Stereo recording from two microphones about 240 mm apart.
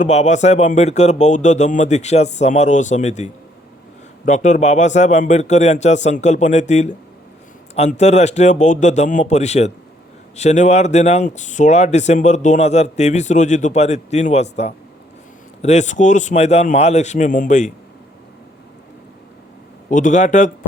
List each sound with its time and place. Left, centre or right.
0.0 s speech: left
4.3 s speech: left
19.9 s speech: left